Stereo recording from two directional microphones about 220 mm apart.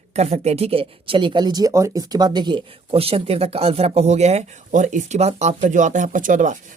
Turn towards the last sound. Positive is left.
turn(degrees=-35)  # may be behind; listen again after turning